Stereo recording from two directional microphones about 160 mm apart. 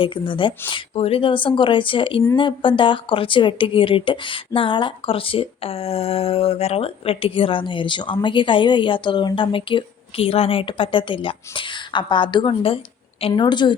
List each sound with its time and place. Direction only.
0.0 s a woman's voice: 30° left (ahead or behind)